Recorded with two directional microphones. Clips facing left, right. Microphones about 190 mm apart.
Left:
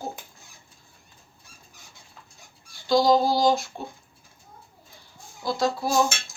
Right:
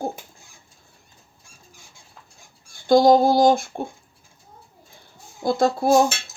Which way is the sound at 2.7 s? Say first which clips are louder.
Right 5 dB; 50° right (ahead or behind).